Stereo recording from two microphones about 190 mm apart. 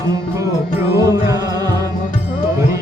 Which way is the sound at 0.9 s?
15° right (ahead or behind).